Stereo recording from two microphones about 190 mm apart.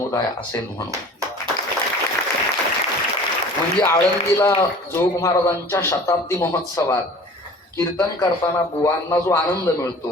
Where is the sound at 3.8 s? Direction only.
15° left (ahead or behind).